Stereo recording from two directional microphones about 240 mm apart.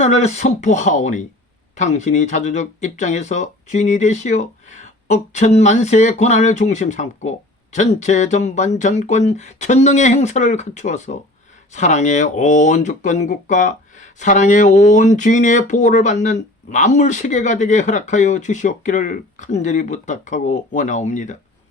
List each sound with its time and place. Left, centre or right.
0.0 s speech: left